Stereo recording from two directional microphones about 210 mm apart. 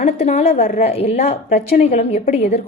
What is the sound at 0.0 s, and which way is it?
A woman's voice, 30° left (ahead or behind).